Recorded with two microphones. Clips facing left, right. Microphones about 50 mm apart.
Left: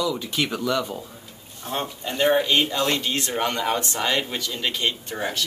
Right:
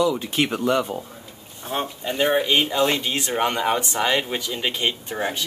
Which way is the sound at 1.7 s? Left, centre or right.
Centre.